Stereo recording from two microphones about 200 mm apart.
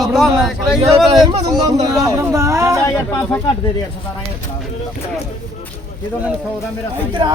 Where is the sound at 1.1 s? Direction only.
20° right (ahead or behind).